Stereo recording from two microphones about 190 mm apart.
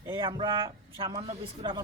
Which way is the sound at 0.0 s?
25° right (ahead or behind).